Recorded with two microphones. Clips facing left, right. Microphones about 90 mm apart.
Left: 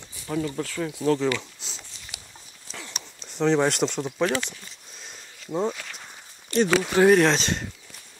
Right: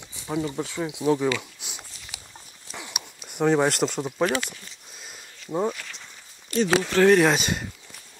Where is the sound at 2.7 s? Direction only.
15° right (ahead or behind).